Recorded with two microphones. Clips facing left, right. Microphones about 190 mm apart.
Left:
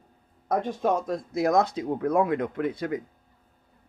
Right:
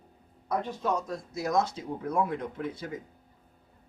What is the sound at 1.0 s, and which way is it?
Speech, 90° left.